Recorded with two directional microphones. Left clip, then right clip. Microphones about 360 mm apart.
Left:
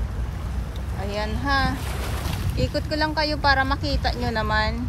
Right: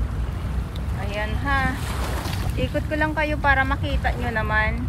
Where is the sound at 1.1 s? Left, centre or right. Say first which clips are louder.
Left 1 dB; centre.